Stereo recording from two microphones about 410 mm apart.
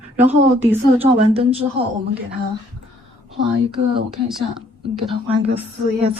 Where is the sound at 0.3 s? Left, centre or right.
Centre; by 1.9 s right.